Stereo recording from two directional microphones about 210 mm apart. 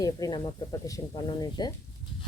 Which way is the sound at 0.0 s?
20° left (ahead or behind).